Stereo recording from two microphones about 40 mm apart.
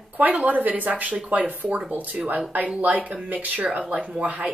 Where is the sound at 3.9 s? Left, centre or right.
Right.